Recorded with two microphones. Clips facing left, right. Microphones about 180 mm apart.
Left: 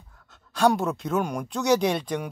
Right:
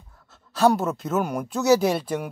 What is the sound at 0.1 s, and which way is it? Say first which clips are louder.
Speech: right 2 dB; 5° right (ahead or behind).